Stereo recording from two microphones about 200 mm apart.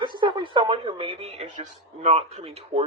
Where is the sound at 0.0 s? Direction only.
25° right (ahead or behind).